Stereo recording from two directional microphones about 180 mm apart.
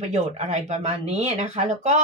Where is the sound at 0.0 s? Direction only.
40° right (ahead or behind).